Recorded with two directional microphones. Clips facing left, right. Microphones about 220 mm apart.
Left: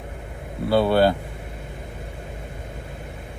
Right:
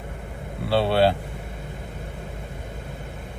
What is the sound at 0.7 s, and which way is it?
Speech, 30° right (ahead or behind).